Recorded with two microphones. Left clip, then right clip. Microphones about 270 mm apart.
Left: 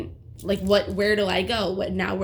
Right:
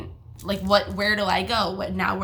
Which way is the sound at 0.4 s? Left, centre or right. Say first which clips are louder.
Even; centre.